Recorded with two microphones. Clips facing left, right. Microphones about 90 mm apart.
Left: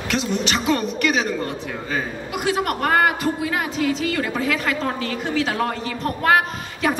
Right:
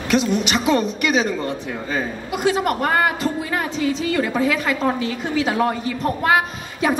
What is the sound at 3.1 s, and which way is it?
Speech, 5° left (ahead or behind).